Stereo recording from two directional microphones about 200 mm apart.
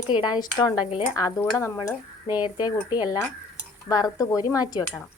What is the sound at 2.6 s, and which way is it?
A woman's voice, 20° left (ahead or behind).